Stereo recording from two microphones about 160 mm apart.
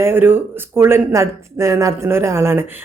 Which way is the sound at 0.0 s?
15° right (ahead or behind).